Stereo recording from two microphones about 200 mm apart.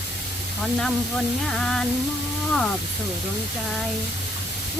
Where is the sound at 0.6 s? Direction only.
Centre (ahead or behind).